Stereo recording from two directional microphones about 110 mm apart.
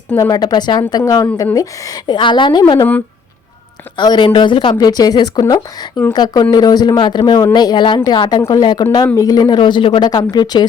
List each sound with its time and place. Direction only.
0.2 s a woman's voice: 35° left (ahead or behind)
3.9 s a woman's voice: 45° left (ahead or behind)